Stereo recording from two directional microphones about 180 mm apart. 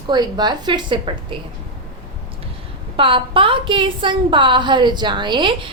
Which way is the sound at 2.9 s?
30° right (ahead or behind).